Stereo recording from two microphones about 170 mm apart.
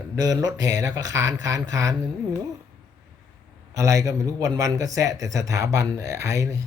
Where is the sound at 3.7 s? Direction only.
20° right (ahead or behind).